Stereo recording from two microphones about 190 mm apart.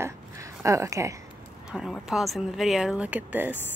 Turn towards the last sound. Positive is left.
turn(degrees=-10)  # may be behind; listen again after turning